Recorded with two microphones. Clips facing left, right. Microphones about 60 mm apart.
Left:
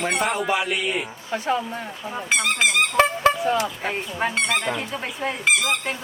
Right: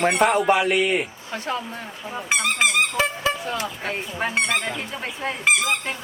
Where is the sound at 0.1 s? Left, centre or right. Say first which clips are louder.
Right 4 dB; centre.